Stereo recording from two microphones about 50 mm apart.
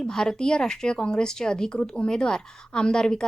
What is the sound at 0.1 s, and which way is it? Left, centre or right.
A woman's voice, centre.